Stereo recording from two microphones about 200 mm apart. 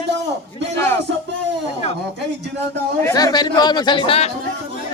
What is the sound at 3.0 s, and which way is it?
Speech, 20° left (ahead or behind).